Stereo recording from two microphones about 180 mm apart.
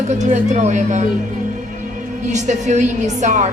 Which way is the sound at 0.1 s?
40° right (ahead or behind).